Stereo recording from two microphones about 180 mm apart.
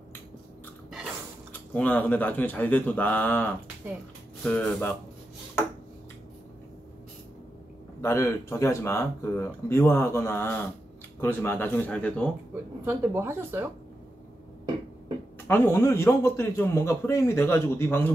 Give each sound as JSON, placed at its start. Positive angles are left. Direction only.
{"t": 1.5, "sound": "a man's voice", "side_deg": 10}
{"t": 8.0, "sound": "a man's voice", "side_deg": 15}
{"t": 12.8, "sound": "speech", "side_deg": -10}
{"t": 15.4, "sound": "a man's voice", "side_deg": 15}